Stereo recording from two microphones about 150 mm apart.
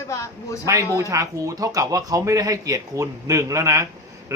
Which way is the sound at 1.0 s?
20° right (ahead or behind).